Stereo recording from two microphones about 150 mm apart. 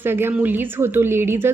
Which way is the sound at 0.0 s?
15° right (ahead or behind).